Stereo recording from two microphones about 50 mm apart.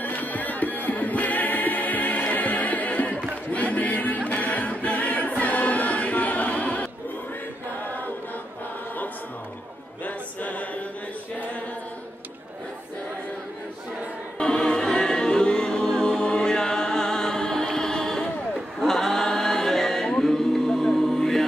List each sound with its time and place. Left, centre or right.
0.0 s music: left
3.5 s a sound: left
4.4 s choir: left
6.5 s music: left
10.0 s choir: left
14.4 s music: centre
18.5 s choir: centre